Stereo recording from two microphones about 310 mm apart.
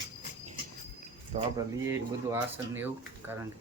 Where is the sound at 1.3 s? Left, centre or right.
Right.